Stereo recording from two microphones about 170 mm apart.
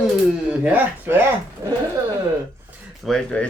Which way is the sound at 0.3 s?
5° right (ahead or behind).